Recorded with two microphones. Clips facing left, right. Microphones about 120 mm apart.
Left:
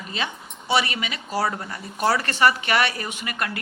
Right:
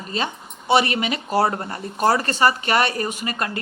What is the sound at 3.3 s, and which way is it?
Speech, 30° right (ahead or behind).